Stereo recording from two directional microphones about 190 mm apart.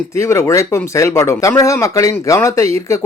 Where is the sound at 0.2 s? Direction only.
15° left (ahead or behind).